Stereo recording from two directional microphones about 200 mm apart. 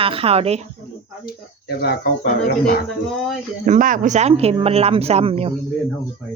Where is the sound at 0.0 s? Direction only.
25° right (ahead or behind).